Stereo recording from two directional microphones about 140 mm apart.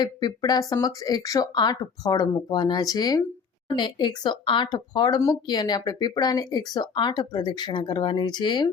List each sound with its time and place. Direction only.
0.0 s speech: 30° left (ahead or behind)